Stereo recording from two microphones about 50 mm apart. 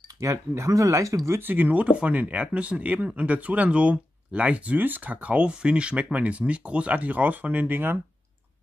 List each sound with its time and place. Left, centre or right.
0.2 s speech: right
1.4 s speech: right